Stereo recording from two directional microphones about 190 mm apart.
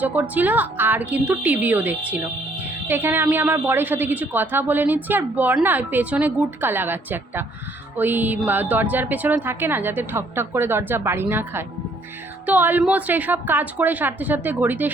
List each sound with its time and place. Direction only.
0.0 s a woman's voice: 10° right (ahead or behind)